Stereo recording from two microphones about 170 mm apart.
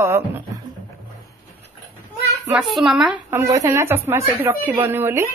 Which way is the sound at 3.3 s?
15° right (ahead or behind).